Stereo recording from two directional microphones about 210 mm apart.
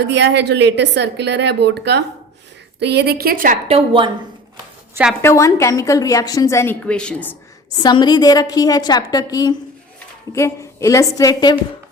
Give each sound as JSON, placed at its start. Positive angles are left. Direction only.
{"t": 0.0, "sound": "a woman's voice", "side_deg": -55}
{"t": 3.7, "sound": "a woman's voice", "side_deg": -25}
{"t": 5.2, "sound": "a woman's voice", "side_deg": 15}
{"t": 7.8, "sound": "a woman's voice", "side_deg": 20}